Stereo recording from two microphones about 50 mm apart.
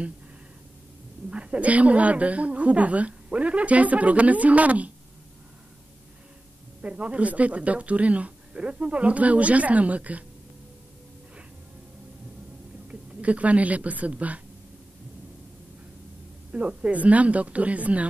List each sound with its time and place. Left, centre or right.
1.3 s a woman's voice: right
6.8 s a woman's voice: right
12.8 s speech: right
16.5 s a woman's voice: right